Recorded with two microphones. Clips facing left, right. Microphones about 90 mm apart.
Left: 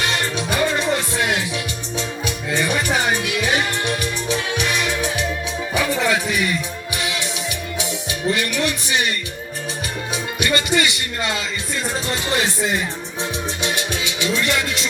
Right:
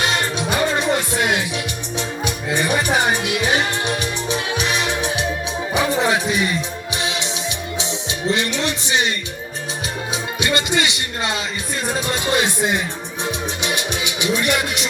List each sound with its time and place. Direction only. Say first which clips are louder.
0.0 s music: right 2 dB; 25° right (ahead or behind)
10.4 s music: left 1 dB; 20° right (ahead or behind)